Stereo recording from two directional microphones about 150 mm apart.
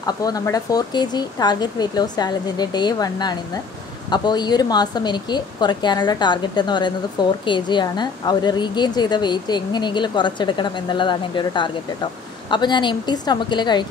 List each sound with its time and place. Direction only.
0.0 s a woman's voice: 25° left (ahead or behind)